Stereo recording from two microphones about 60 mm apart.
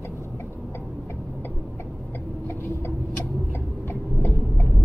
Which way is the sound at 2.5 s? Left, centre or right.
Left.